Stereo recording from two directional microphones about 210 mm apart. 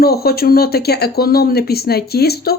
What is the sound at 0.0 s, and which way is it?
Speech, 50° left (ahead or behind).